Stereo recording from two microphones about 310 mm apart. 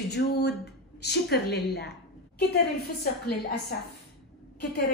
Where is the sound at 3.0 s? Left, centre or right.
Left.